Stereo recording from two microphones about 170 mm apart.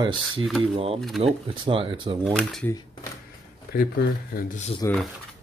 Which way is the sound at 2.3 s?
Centre (ahead or behind).